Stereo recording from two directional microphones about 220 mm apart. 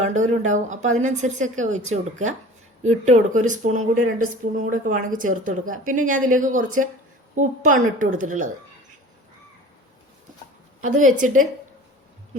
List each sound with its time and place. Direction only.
0.0 s speech: 30° right (ahead or behind)
3.1 s speech: 35° right (ahead or behind)
11.0 s speech: 35° right (ahead or behind)